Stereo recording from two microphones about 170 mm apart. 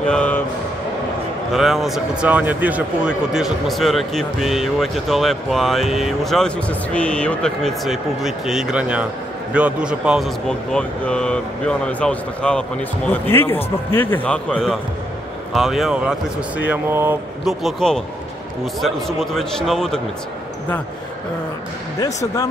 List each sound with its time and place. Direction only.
0.0 s music: 5° left (ahead or behind)
1.5 s a man's voice: centre (ahead or behind)
17.5 s speech: centre (ahead or behind)
22.0 s speech: 20° left (ahead or behind)